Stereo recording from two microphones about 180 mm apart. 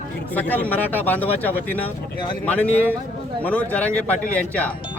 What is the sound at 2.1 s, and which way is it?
Speech, 25° left (ahead or behind).